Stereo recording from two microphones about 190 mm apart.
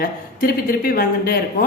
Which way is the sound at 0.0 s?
50° left (ahead or behind).